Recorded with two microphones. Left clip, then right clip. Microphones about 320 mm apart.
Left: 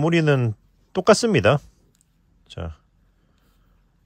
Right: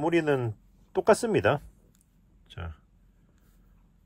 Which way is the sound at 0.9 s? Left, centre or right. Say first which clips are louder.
Left 6 dB; left.